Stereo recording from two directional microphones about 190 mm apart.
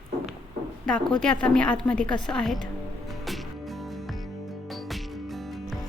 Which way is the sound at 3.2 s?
Centre (ahead or behind).